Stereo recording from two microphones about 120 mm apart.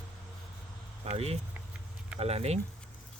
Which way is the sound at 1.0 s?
60° right (ahead or behind).